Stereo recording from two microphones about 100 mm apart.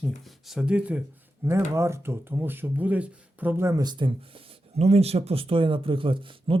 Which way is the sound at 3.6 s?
40° right (ahead or behind).